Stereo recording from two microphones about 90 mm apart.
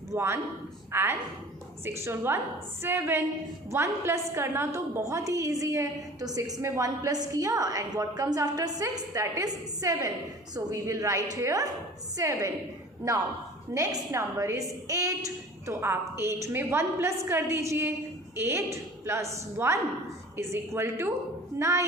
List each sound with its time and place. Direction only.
0.1 s a man's voice: 30° right (ahead or behind)
13.7 s a woman's voice: 35° right (ahead or behind)